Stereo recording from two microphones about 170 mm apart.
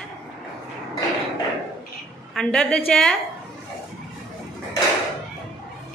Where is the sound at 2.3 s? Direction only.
5° left (ahead or behind).